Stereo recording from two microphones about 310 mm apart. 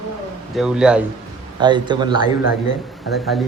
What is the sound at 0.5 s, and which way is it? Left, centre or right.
Speech, centre.